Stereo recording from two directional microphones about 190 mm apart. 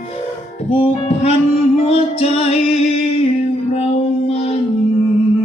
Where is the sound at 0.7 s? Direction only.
30° left (ahead or behind).